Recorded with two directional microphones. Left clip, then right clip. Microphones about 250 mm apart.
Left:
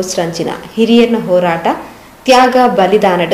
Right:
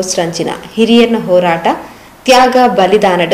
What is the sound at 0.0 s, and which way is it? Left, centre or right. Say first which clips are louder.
A woman's voice: right 1 dB; centre.